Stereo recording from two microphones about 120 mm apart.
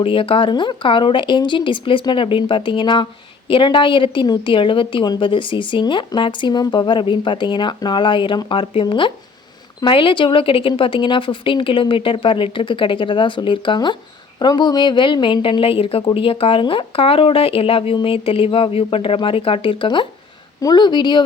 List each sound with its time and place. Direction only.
0.0 s a woman's voice: 50° left (ahead or behind)